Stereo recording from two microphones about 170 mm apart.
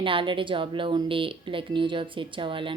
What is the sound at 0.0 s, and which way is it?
Speech, 30° right (ahead or behind).